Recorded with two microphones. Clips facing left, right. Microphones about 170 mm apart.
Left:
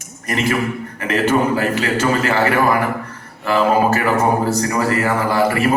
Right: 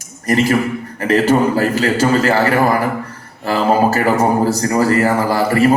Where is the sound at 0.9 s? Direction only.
35° right (ahead or behind).